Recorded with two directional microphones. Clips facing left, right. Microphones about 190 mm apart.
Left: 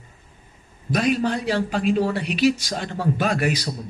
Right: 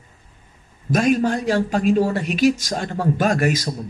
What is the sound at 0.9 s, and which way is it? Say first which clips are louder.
Speech: right 3 dB; 45° right (ahead or behind).